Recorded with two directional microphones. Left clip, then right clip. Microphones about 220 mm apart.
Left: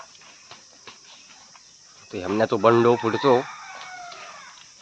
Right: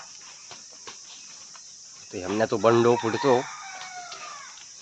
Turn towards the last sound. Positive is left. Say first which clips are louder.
# left 3 dB
turn(degrees=15)  # may be behind; listen again after turning